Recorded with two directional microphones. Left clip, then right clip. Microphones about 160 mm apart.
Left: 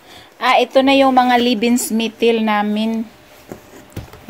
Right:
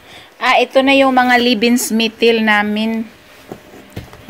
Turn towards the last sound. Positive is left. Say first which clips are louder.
# right 2 dB
turn(degrees=45)  # may be behind; listen again after turning